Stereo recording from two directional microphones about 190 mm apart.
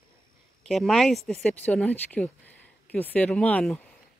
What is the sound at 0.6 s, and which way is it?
A woman's voice, centre (ahead or behind).